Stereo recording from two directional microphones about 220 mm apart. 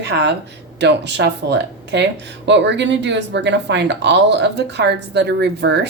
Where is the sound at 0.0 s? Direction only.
50° right (ahead or behind).